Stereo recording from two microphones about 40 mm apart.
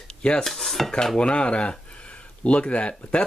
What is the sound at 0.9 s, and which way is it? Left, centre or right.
Speech, centre.